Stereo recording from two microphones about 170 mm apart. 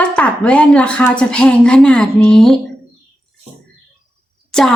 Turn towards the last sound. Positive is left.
turn(degrees=5)  # may be behind; listen again after turning